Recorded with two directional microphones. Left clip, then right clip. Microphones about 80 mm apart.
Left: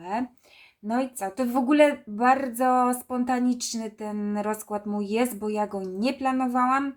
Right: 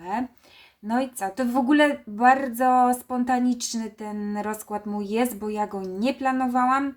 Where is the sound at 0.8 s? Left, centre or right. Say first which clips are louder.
Right 2 dB; centre.